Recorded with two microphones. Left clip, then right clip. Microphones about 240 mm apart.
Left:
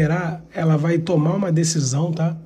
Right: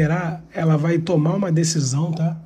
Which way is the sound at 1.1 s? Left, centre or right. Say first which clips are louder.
Even; centre.